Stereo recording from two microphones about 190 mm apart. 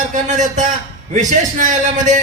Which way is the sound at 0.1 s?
40° right (ahead or behind).